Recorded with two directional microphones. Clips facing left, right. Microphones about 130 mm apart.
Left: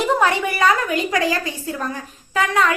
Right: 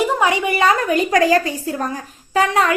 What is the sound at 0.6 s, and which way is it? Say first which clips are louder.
Speech: right 2 dB; 35° right (ahead or behind).